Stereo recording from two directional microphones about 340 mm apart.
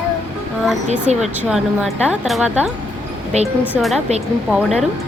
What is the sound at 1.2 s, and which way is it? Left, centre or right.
Speech, centre.